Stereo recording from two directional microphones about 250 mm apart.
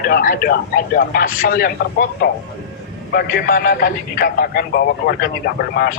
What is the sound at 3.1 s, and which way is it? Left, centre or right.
Speech, left.